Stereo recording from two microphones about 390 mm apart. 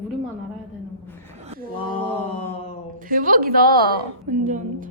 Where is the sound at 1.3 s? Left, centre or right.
Centre.